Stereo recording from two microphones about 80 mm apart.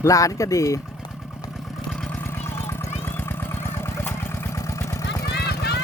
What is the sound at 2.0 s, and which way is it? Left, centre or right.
Vehicle, left.